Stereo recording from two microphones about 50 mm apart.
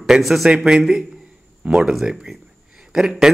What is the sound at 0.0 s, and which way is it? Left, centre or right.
Speech, centre.